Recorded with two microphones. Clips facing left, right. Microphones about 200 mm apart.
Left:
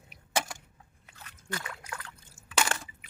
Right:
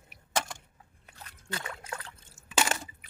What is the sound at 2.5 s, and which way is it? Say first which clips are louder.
Drip: right 1 dB; 20° right (ahead or behind).